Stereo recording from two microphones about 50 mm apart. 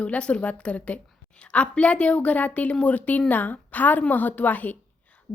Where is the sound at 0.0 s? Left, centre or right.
Left.